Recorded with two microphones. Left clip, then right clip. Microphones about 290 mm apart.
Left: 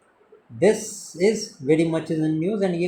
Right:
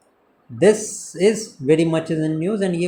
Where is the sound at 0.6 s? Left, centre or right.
Right.